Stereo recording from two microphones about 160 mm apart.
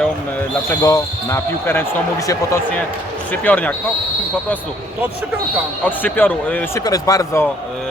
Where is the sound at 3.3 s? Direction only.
10° left (ahead or behind).